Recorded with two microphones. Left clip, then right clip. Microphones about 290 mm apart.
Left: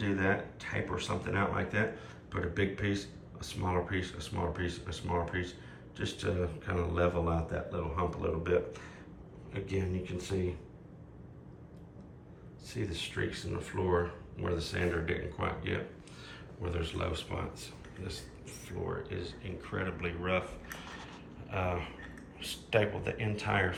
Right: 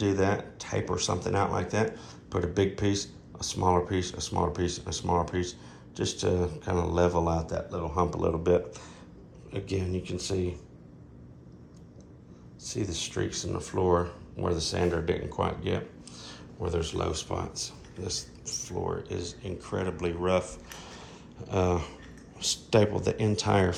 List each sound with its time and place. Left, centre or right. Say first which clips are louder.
0.0 s speech: right 5 dB; centre
12.6 s speech: right 5 dB; centre
21.6 s a sound: right 7 dB; right
22.4 s speech: right 6 dB; right